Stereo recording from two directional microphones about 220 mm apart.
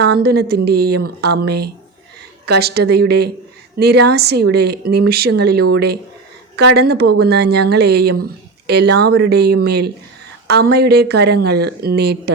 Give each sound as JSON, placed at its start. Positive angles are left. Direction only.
{"t": 0.0, "sound": "speech", "side_deg": -45}